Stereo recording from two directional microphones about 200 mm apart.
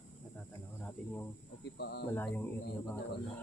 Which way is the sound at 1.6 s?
55° left (ahead or behind).